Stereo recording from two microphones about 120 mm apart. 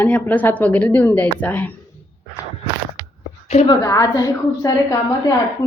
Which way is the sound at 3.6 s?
30° left (ahead or behind).